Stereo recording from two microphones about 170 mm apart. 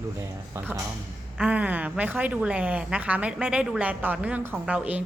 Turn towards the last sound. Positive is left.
turn(degrees=-5)  # may be behind; listen again after turning